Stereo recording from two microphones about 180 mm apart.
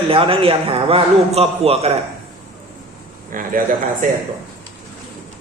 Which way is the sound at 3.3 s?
50° right (ahead or behind).